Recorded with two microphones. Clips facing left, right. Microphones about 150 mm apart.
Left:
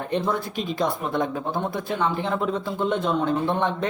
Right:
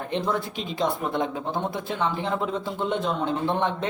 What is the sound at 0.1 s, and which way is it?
Speech, 20° right (ahead or behind).